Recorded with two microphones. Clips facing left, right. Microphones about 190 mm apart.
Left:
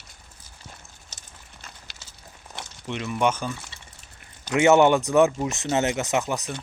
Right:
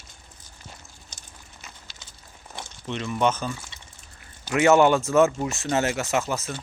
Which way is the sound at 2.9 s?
10° left (ahead or behind).